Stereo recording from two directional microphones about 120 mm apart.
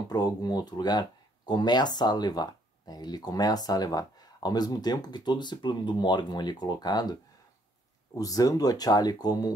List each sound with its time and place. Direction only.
0.1 s speech: 35° left (ahead or behind)